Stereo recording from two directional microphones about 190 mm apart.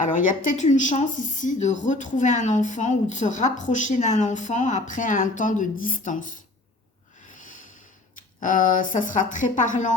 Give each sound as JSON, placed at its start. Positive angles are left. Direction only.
{"t": 0.0, "sound": "speech", "side_deg": 45}
{"t": 7.3, "sound": "snort", "side_deg": 40}
{"t": 8.1, "sound": "a woman's voice", "side_deg": 45}